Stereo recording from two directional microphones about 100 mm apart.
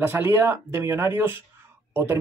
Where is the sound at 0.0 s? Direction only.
25° right (ahead or behind).